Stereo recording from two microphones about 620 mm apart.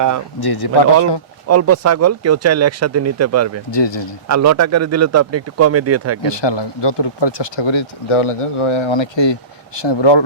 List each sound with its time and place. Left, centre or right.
0.3 s speech: left
1.5 s speech: right
3.7 s speech: left
4.3 s speech: right
6.2 s speech: left